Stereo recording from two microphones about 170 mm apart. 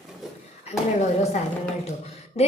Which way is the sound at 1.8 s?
40° left (ahead or behind).